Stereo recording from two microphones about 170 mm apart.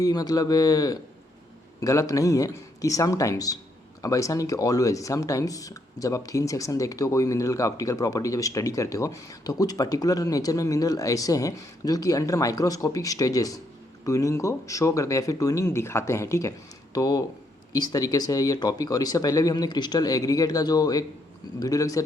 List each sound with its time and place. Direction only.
0.0 s speech: 20° left (ahead or behind)